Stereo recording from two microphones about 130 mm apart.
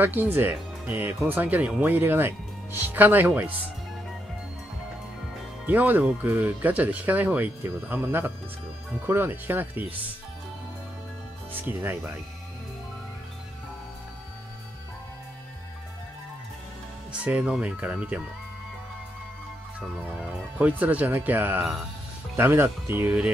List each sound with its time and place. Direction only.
0.0 s speech: 15° right (ahead or behind)
5.7 s speech: 15° right (ahead or behind)
11.6 s speech: 20° right (ahead or behind)
17.2 s speech: 10° right (ahead or behind)
20.2 s speech: 10° right (ahead or behind)